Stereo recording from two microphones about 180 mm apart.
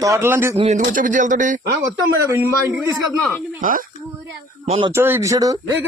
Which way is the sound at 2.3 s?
15° right (ahead or behind).